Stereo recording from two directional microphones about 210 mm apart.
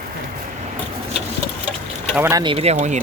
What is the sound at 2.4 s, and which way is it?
Speech, 25° right (ahead or behind).